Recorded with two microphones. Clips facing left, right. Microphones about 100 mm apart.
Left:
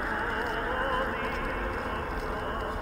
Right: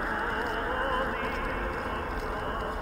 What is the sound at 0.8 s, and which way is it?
Music, centre (ahead or behind).